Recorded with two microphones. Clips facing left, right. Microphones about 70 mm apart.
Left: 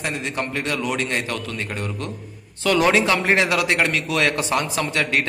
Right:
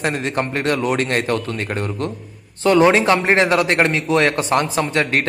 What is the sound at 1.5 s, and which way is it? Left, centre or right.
A man's voice, right.